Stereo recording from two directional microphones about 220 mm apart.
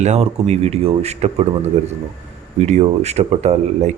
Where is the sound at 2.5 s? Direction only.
30° right (ahead or behind).